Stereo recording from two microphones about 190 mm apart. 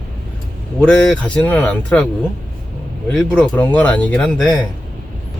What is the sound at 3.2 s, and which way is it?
Speech, 10° left (ahead or behind).